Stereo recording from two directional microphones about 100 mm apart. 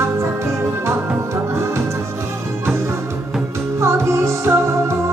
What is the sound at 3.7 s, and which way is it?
Music, 25° right (ahead or behind).